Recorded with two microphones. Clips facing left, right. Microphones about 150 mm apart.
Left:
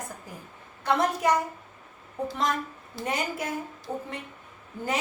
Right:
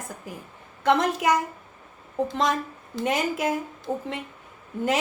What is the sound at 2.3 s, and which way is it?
A woman's voice, 90° right.